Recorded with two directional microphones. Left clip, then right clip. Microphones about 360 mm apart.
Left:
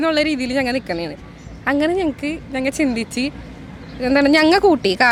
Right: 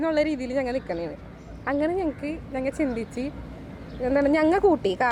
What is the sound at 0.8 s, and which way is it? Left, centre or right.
Speech, left.